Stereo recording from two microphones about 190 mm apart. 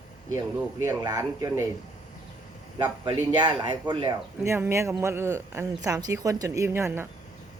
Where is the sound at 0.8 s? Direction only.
15° right (ahead or behind).